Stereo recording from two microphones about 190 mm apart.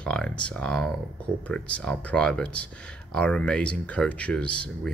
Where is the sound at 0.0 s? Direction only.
5° left (ahead or behind).